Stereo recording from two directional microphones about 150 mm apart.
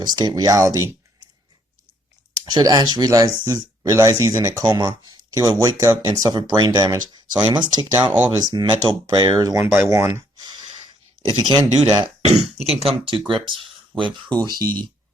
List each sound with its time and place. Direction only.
0.0 s speech: 30° right (ahead or behind)
2.4 s speech: 25° right (ahead or behind)
12.2 s speech: 50° right (ahead or behind); by 14.7 s 25° right (ahead or behind)